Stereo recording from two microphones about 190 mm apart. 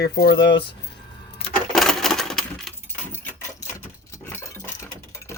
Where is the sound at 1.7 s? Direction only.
Centre (ahead or behind).